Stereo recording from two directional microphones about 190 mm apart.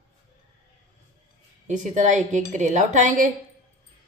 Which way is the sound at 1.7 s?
40° right (ahead or behind).